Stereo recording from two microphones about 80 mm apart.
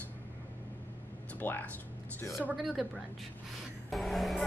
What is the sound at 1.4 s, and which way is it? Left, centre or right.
Speech, left.